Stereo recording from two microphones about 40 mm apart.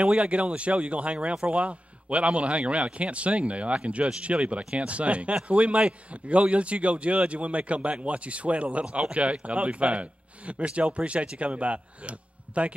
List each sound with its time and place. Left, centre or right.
0.0 s a man's voice: right